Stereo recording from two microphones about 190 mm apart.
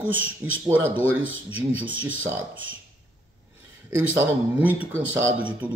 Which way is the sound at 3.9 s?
10° right (ahead or behind).